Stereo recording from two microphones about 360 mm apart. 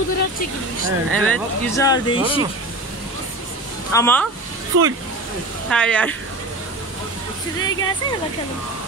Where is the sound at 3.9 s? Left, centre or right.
Centre.